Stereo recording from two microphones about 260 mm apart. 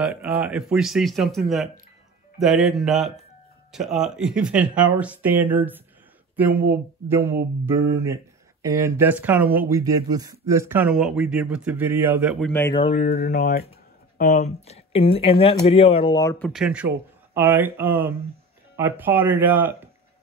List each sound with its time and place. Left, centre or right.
0.0 s speech: centre
12.7 s speech: left
13.0 s speech: left; by 19.8 s centre